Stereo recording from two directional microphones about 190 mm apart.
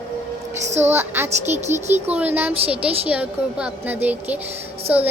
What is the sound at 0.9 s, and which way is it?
Speech, 10° right (ahead or behind).